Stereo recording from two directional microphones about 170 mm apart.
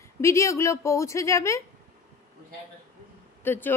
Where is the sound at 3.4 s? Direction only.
10° left (ahead or behind).